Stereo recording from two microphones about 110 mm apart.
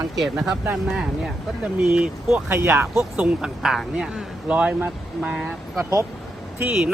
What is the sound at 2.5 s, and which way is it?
Speech, 20° right (ahead or behind).